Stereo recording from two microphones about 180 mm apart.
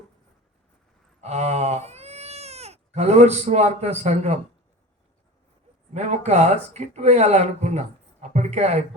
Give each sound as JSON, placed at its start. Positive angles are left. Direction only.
{"t": 1.2, "sound": "speech", "side_deg": -40}
{"t": 5.9, "sound": "speech", "side_deg": -40}